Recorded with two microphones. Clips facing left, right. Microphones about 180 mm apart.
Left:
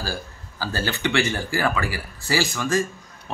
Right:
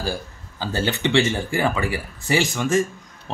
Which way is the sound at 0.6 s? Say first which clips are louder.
Right 3 dB; 20° right (ahead or behind).